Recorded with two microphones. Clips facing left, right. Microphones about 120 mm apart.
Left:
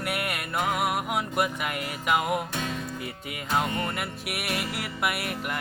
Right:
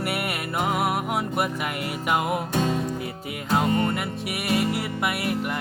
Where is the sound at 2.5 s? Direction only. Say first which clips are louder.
Right 8 dB; 35° right (ahead or behind).